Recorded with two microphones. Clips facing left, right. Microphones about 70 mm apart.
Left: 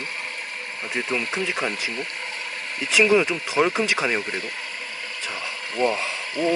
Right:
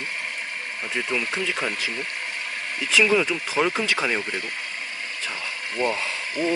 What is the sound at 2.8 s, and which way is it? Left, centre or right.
Speech, left.